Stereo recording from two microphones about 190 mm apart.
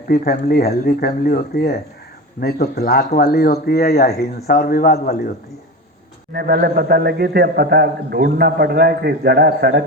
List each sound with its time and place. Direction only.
0.1 s speech: 55° left (ahead or behind)
6.3 s a man's voice: 55° right (ahead or behind)